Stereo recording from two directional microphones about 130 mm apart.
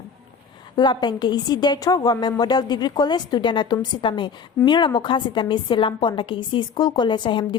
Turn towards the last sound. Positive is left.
turn(degrees=35)  # may be behind; listen again after turning